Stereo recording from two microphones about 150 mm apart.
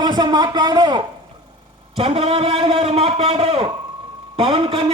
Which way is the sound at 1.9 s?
40° right (ahead or behind).